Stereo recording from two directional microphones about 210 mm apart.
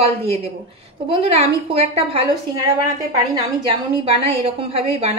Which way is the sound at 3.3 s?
20° right (ahead or behind).